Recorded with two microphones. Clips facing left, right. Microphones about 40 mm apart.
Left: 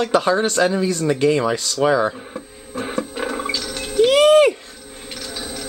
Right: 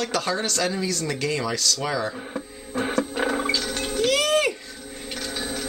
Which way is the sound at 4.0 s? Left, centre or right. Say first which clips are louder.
Left 10 dB; left.